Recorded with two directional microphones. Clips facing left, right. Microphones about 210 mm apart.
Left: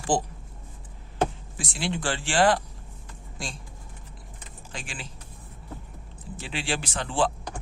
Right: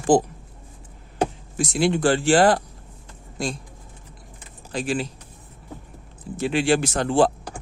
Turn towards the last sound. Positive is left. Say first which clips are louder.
# right 8 dB
turn(degrees=-40)  # may be behind; listen again after turning